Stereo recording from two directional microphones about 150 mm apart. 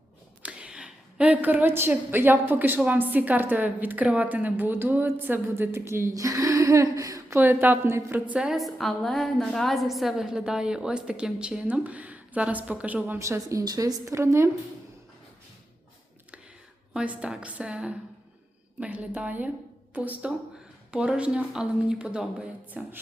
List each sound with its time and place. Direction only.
0.4 s a woman's voice: 5° right (ahead or behind)
16.9 s a woman's voice: 5° right (ahead or behind)